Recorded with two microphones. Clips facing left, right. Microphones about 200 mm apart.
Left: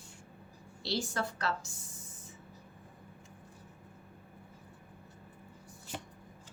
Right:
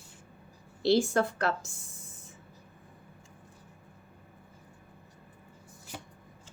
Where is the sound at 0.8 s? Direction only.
55° right (ahead or behind).